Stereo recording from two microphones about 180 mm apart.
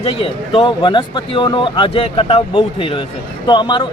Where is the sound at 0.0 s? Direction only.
30° left (ahead or behind).